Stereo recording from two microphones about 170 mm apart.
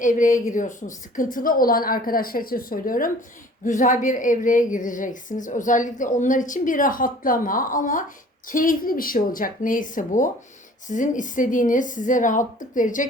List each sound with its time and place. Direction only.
0.0 s a woman's voice: 50° left (ahead or behind)